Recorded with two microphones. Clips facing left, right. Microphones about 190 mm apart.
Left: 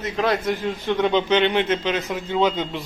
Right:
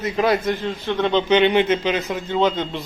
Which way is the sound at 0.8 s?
15° left (ahead or behind).